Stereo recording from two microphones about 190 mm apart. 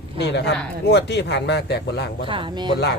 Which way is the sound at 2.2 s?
25° right (ahead or behind).